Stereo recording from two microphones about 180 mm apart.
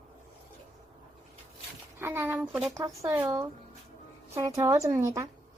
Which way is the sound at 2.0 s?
10° right (ahead or behind).